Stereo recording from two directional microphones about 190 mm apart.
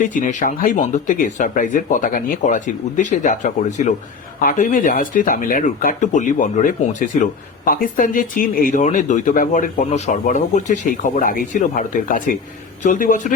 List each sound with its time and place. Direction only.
0.0 s speech: 45° left (ahead or behind)